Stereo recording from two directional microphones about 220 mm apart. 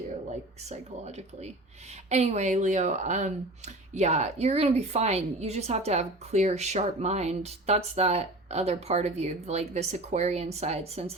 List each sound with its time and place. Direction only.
0.7 s a woman's voice: 30° right (ahead or behind)